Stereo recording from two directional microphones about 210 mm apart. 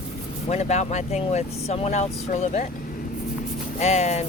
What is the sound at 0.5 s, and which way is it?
Speech, 35° left (ahead or behind).